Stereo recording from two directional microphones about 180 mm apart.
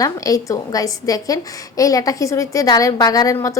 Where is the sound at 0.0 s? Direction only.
20° left (ahead or behind).